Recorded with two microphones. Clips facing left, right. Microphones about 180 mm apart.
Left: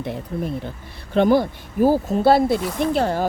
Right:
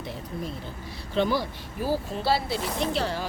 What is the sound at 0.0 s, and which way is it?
Speech, 60° left (ahead or behind).